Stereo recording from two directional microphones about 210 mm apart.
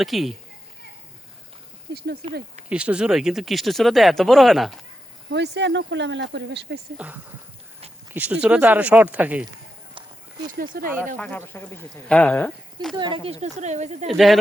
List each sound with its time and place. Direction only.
0.0 s speech: centre (ahead or behind)
1.9 s speech: 50° right (ahead or behind)
2.6 s speech: 5° right (ahead or behind)
5.3 s speech: 55° right (ahead or behind)
6.9 s speech: 5° right (ahead or behind)
10.7 s speech: 45° right (ahead or behind)
11.2 s speech: 10° left (ahead or behind)
13.0 s speech: 25° right (ahead or behind)
14.1 s speech: centre (ahead or behind)